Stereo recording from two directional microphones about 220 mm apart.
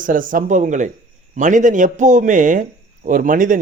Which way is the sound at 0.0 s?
40° right (ahead or behind).